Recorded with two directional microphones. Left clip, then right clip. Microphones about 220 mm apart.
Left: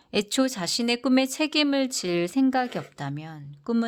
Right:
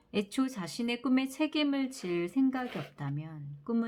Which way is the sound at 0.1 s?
45° left (ahead or behind).